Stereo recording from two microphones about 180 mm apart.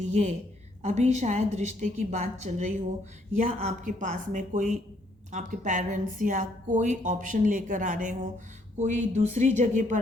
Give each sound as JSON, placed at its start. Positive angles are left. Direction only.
{"t": 0.0, "sound": "a woman's voice", "side_deg": -40}